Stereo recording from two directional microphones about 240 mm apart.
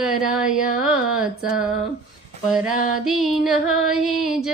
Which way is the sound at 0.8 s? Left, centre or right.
Centre.